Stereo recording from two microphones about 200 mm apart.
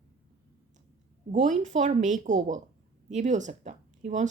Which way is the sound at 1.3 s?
35° right (ahead or behind).